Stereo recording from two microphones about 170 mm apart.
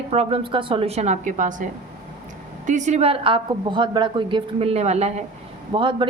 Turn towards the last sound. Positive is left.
turn(degrees=-30)  # may be behind; listen again after turning